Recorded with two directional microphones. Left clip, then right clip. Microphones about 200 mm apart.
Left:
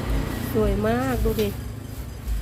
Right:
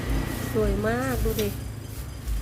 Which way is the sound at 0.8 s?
10° left (ahead or behind).